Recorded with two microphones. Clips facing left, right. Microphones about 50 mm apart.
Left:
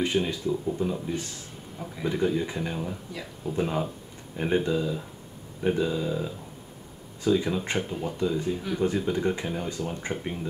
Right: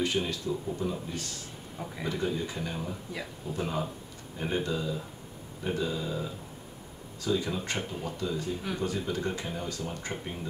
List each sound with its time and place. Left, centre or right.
0.0 s speech: left